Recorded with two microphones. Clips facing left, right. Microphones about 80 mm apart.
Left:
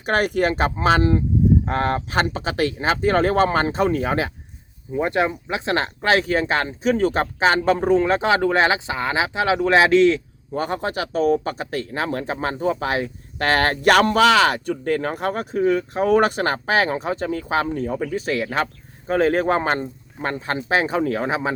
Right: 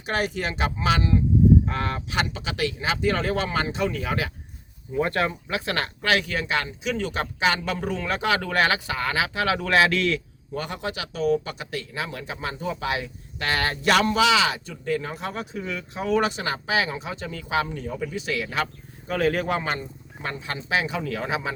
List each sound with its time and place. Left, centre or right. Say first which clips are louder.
0.0 s speech: left 7 dB; left
4.9 s speech: left 3 dB; centre